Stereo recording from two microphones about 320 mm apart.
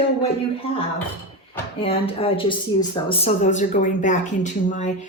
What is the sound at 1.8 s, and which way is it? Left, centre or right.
Speech, centre.